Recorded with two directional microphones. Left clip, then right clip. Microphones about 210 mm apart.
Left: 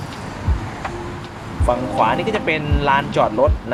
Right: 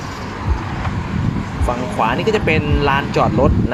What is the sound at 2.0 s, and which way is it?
Speech, 25° right (ahead or behind).